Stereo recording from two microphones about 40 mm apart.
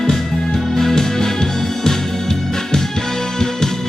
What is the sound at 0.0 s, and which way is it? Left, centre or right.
Music, centre.